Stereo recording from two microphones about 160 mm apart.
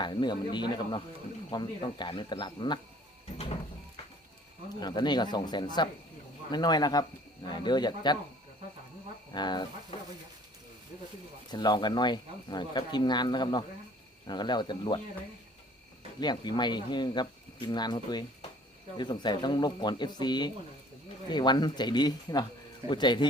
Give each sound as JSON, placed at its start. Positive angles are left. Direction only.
{"t": 0.0, "sound": "speech", "side_deg": 30}
{"t": 3.3, "sound": "a sound", "side_deg": 40}
{"t": 4.8, "sound": "speech", "side_deg": 25}
{"t": 9.3, "sound": "speech", "side_deg": 25}
{"t": 11.5, "sound": "speech", "side_deg": 30}
{"t": 16.2, "sound": "speech", "side_deg": 30}